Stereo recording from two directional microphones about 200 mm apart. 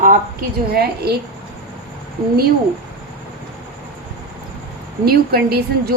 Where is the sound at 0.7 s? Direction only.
50° right (ahead or behind).